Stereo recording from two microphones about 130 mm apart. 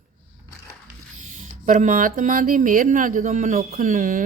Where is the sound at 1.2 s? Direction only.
75° right (ahead or behind).